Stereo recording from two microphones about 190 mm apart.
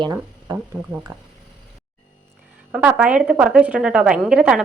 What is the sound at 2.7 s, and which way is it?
A woman's voice, 5° right (ahead or behind).